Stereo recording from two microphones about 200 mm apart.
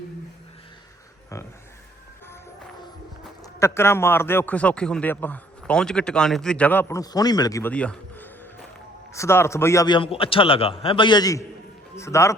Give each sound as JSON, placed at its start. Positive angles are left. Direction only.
{"t": 3.4, "sound": "a man's voice", "side_deg": 15}